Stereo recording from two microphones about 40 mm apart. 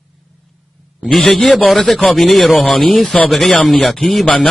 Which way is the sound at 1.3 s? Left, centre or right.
Left.